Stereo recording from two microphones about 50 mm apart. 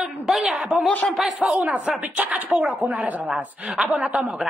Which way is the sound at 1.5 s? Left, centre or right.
Right.